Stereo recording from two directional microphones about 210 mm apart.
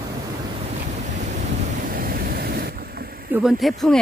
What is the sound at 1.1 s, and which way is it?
Waves, 35° right (ahead or behind).